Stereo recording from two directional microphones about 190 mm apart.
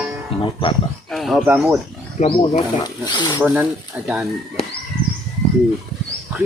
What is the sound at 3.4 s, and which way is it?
Speech, 5° right (ahead or behind).